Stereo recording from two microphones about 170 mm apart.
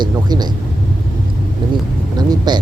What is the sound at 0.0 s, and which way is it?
Speech, 25° right (ahead or behind).